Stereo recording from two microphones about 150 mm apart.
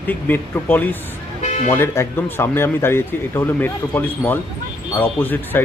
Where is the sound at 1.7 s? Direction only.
15° left (ahead or behind).